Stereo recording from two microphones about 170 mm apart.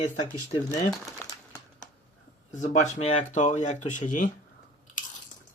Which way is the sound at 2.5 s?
45° left (ahead or behind).